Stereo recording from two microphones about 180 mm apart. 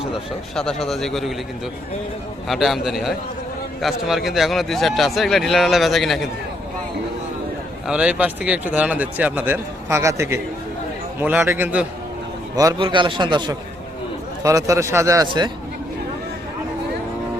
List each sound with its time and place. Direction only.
0.1 s speech: 5° left (ahead or behind)
2.5 s speech: centre (ahead or behind)
7.9 s a man's voice: 5° right (ahead or behind)
12.5 s a man's voice: 25° right (ahead or behind)